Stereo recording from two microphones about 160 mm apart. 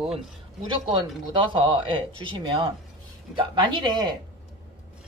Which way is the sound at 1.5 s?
30° right (ahead or behind).